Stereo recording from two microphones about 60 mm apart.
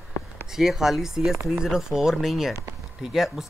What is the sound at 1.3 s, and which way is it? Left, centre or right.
Speech, right.